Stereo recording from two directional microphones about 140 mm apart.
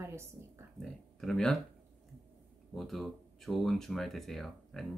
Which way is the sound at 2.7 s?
Centre (ahead or behind).